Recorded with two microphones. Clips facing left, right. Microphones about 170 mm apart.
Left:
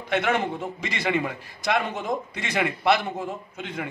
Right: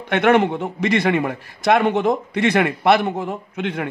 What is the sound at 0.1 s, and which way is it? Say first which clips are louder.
A man's voice: right 8 dB; 65° right (ahead or behind).